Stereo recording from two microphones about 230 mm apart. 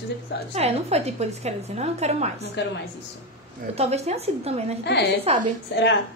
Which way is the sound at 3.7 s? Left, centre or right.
Right.